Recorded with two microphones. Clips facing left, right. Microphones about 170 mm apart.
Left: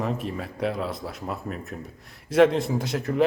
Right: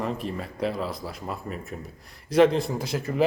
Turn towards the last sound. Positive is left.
turn(degrees=0)  # may be behind; listen again after turning